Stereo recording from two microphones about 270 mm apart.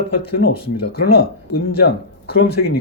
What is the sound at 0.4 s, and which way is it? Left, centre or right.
Speech, left.